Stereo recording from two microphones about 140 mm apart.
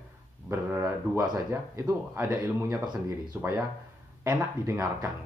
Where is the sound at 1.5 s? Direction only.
20° right (ahead or behind).